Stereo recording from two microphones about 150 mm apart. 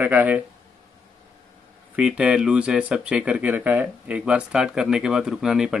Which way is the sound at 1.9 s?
10° right (ahead or behind).